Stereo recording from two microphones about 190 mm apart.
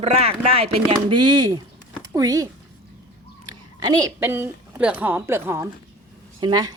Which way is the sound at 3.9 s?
20° right (ahead or behind).